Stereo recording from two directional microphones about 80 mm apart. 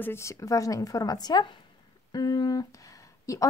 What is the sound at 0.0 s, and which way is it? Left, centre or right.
Speech, left.